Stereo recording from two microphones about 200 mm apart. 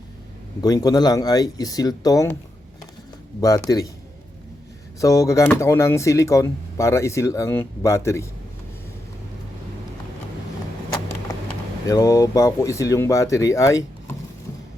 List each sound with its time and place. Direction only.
0.6 s speech: 20° left (ahead or behind)
3.4 s speech: 15° left (ahead or behind)
4.9 s speech: 15° left (ahead or behind)
11.9 s speech: 15° left (ahead or behind)